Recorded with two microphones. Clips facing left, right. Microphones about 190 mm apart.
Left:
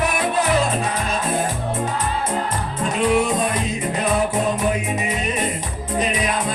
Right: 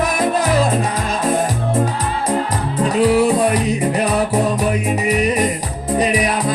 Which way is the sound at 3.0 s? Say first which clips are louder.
Right 5 dB; 35° right (ahead or behind).